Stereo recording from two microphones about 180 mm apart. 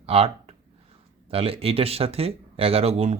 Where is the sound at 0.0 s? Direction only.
30° right (ahead or behind).